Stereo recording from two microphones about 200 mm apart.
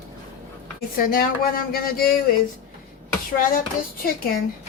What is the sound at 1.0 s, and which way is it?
Speech, 45° left (ahead or behind).